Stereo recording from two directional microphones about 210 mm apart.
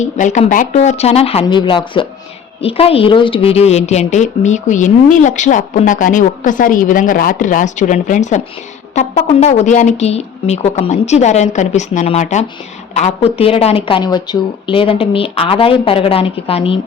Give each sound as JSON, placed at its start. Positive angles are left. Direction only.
{"t": 0.0, "sound": "a woman's voice", "side_deg": 35}